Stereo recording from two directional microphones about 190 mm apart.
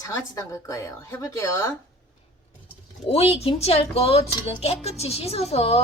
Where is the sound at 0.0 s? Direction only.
15° left (ahead or behind).